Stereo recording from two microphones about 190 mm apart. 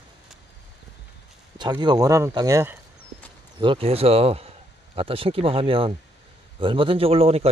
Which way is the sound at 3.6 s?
30° right (ahead or behind).